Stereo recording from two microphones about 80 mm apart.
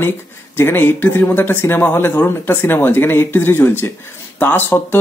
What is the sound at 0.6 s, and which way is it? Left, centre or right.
Speech, left.